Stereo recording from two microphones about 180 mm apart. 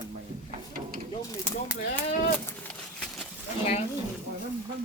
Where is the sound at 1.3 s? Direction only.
15° left (ahead or behind).